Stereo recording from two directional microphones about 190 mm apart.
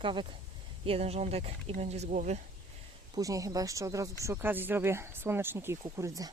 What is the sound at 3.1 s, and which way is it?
Speech, 15° right (ahead or behind).